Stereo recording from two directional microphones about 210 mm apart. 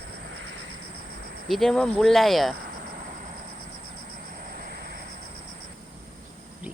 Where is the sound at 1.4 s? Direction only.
Centre (ahead or behind).